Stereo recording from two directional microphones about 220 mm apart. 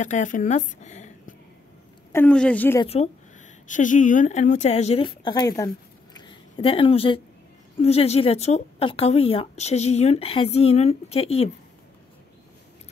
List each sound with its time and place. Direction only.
0.0 s a woman's voice: 35° left (ahead or behind)
2.1 s a woman's voice: 5° left (ahead or behind)
2.8 s a woman's voice: 25° left (ahead or behind)
6.1 s a sound: 25° left (ahead or behind)
7.8 s speech: 30° left (ahead or behind)